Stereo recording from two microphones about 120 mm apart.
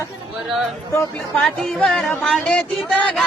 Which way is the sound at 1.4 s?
5° left (ahead or behind).